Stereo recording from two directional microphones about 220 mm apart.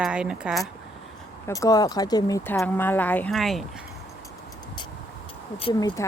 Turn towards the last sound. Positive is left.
turn(degrees=25)  # may be behind; listen again after turning